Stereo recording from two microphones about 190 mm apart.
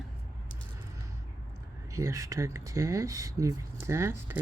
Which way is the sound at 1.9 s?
15° right (ahead or behind).